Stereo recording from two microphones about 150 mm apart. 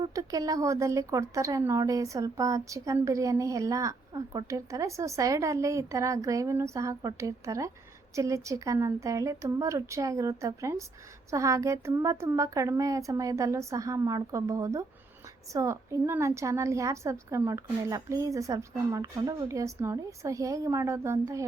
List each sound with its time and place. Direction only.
0.1 s a woman's voice: 25° right (ahead or behind)